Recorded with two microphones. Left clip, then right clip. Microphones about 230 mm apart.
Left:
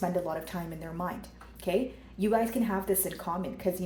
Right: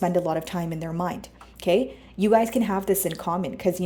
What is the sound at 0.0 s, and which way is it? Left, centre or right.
Speech, right.